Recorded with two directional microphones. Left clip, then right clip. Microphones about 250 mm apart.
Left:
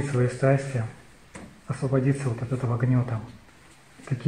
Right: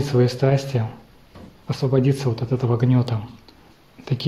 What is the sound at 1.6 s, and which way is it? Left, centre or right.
Speech, right.